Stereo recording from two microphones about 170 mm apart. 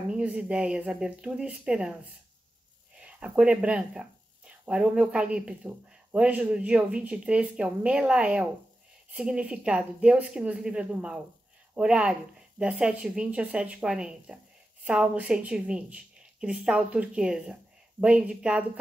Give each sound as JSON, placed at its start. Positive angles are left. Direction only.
{"t": 0.1, "sound": "speech", "side_deg": -5}
{"t": 3.0, "sound": "a woman's voice", "side_deg": -5}